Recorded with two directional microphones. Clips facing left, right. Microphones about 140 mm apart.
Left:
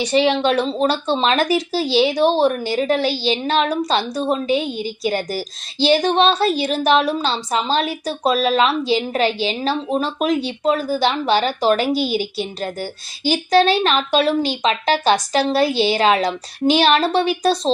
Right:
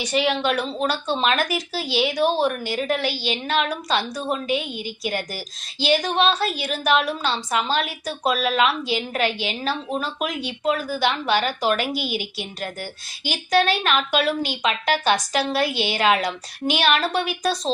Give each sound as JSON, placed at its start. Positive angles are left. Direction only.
{"t": 0.0, "sound": "a woman's voice", "side_deg": 30}